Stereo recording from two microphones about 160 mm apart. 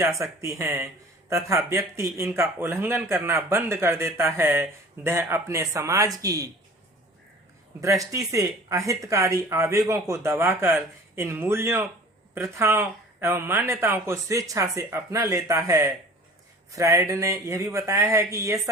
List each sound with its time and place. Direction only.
0.0 s speech: 20° right (ahead or behind)
7.8 s speech: 20° right (ahead or behind)